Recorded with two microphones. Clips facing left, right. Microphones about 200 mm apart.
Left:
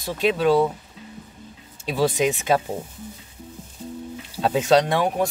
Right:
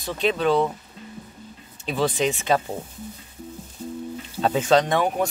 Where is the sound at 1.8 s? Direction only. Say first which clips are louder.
Left 2 dB; 10° left (ahead or behind).